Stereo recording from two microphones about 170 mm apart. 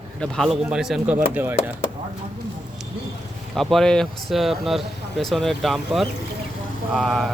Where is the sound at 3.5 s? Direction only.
Centre (ahead or behind).